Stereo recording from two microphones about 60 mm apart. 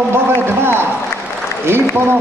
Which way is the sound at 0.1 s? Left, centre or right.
Right.